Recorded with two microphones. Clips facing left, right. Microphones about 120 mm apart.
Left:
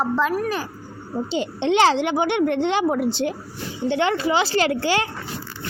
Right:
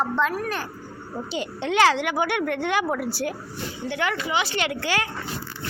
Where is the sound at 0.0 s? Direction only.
5° left (ahead or behind).